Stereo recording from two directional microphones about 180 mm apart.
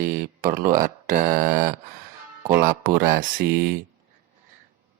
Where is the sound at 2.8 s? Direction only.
55° right (ahead or behind).